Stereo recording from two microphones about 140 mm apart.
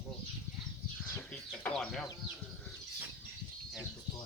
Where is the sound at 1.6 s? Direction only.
5° left (ahead or behind).